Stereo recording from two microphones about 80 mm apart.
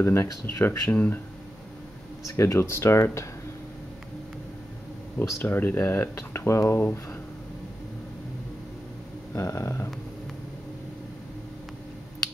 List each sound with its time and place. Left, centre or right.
0.0 s speech: left
2.3 s speech: left
5.4 s speech: left
9.3 s speech: left